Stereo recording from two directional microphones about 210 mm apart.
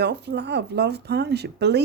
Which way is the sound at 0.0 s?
50° right (ahead or behind).